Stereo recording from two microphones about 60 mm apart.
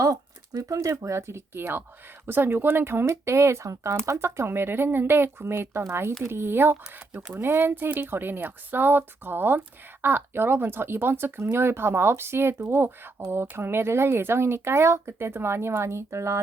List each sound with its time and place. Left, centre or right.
0.0 s a sound: right
0.9 s speech: right
3.1 s speech: right